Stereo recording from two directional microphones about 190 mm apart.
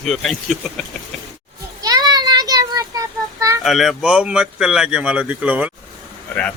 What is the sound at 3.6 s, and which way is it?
Speech, centre (ahead or behind).